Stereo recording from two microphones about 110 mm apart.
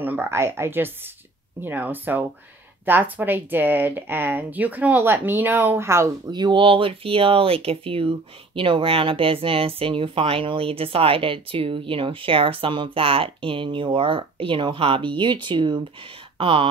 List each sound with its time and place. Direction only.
0.0 s speech: 20° right (ahead or behind)
6.3 s speech: 45° right (ahead or behind)